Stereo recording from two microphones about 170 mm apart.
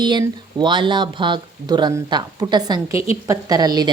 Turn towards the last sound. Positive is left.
turn(degrees=-25)  # may be behind; listen again after turning